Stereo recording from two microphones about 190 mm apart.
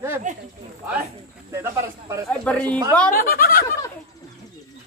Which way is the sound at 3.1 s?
50° left (ahead or behind).